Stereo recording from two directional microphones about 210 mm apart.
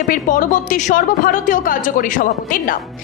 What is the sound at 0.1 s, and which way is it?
A woman's voice, 40° left (ahead or behind).